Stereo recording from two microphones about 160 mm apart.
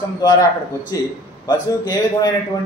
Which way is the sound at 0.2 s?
25° left (ahead or behind).